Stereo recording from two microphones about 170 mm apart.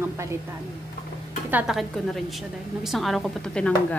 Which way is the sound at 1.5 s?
5° right (ahead or behind).